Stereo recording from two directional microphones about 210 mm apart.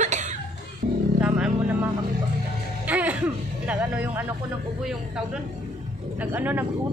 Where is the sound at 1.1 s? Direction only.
5° right (ahead or behind).